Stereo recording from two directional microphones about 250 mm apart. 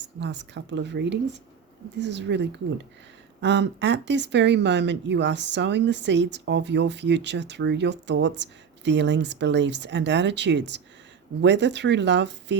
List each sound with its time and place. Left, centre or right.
0.2 s speech: right